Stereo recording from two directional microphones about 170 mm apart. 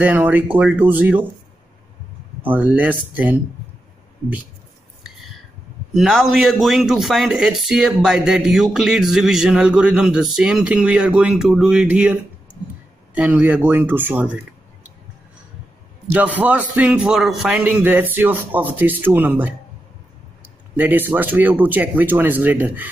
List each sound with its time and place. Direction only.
0.0 s a man's voice: 10° right (ahead or behind)
2.4 s a man's voice: 10° right (ahead or behind)
5.9 s a man's voice: centre (ahead or behind)
16.1 s a man's voice: 10° right (ahead or behind)
20.7 s a man's voice: 10° right (ahead or behind)